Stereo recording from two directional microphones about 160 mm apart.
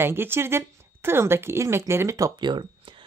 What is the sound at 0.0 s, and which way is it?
A woman's voice, 15° right (ahead or behind).